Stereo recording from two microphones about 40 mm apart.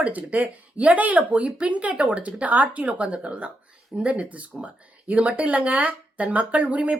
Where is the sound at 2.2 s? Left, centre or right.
Right.